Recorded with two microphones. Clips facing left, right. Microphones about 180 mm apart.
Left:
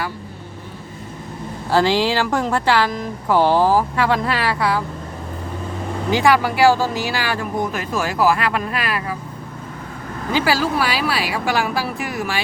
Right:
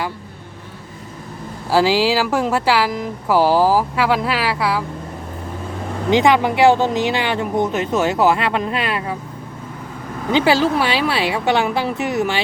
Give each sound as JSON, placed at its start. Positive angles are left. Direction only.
{"t": 1.7, "sound": "speech", "side_deg": -5}
{"t": 6.1, "sound": "speech", "side_deg": -20}
{"t": 10.3, "sound": "speech", "side_deg": -25}